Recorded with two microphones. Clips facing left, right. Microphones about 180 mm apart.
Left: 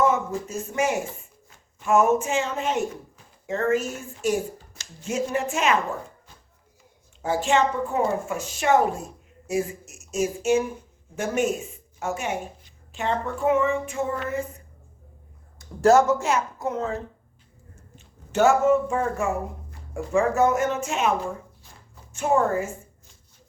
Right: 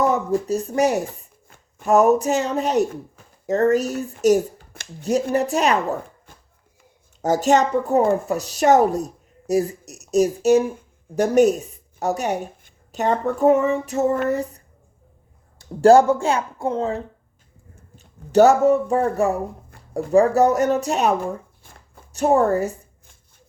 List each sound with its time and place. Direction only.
0.0 s speech: 35° right (ahead or behind)
4.5 s a sound: 60° right (ahead or behind)
5.3 s speech: 40° right (ahead or behind)
7.2 s speech: 40° right (ahead or behind)
21.6 s a sound: 50° right (ahead or behind)
22.1 s speech: 35° right (ahead or behind)